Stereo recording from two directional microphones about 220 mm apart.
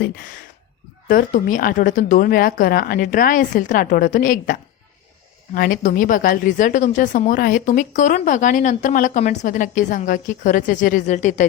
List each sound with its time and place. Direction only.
1.0 s speech: 40° left (ahead or behind)
5.5 s speech: 40° left (ahead or behind)